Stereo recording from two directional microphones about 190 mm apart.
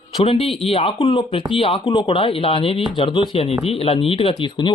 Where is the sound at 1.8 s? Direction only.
20° left (ahead or behind).